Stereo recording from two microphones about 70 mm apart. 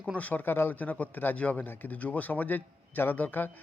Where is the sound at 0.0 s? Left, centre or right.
Centre.